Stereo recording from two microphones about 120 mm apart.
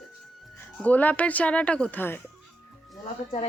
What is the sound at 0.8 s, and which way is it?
Speech, 15° left (ahead or behind).